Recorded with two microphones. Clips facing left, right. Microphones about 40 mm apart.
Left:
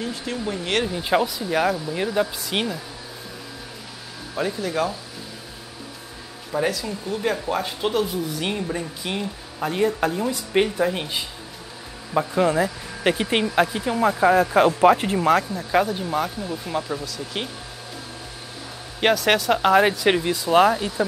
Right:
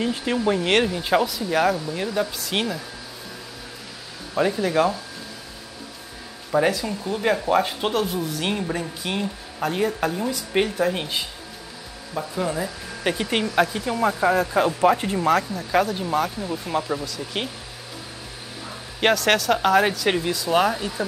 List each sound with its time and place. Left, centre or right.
0.0 s speech: right
0.9 s speech: centre
4.4 s speech: centre
6.5 s speech: centre
7.9 s speech: centre
10.9 s speech: centre
12.1 s speech: left
13.1 s speech: centre
14.1 s speech: centre
15.2 s speech: left
15.7 s speech: centre
18.9 s speech: centre